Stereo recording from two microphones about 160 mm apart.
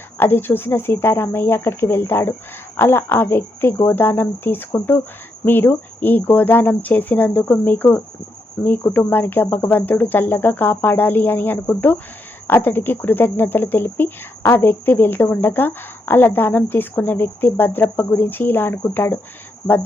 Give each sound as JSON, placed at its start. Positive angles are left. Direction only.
{"t": 0.2, "sound": "speech", "side_deg": 15}